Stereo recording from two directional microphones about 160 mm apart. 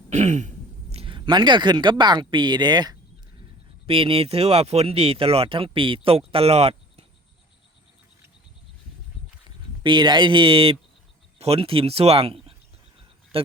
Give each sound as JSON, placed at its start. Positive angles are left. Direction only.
{"t": 0.1, "sound": "speech", "side_deg": -45}
{"t": 9.8, "sound": "speech", "side_deg": -30}